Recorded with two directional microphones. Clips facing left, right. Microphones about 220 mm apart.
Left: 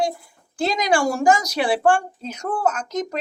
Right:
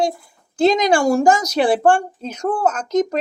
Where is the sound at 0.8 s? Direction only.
45° right (ahead or behind).